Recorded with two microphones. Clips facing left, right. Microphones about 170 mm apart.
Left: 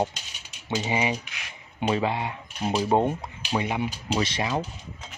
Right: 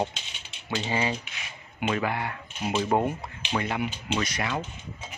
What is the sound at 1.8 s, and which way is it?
Speech, 25° left (ahead or behind).